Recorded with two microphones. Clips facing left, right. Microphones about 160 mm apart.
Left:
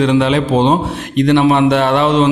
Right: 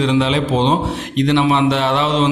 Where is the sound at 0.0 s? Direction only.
55° left (ahead or behind).